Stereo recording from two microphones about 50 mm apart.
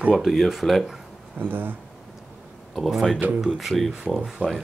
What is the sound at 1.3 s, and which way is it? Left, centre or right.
Speech, right.